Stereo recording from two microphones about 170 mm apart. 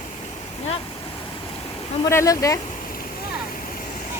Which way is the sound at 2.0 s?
20° left (ahead or behind).